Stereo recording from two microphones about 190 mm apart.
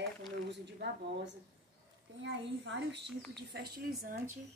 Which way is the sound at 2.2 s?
65° right (ahead or behind).